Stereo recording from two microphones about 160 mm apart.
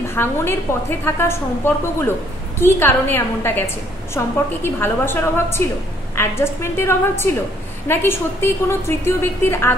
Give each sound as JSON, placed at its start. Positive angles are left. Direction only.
{"t": 0.1, "sound": "a woman's voice", "side_deg": 15}